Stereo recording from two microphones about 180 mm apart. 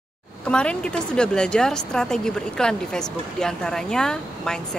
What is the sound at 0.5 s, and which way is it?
A woman's voice, 5° left (ahead or behind).